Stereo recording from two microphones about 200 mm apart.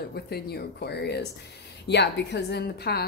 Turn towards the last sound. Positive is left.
turn(degrees=55)  # may be behind; listen again after turning